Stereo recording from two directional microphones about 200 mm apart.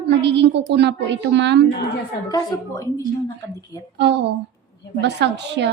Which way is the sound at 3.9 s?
60° right (ahead or behind).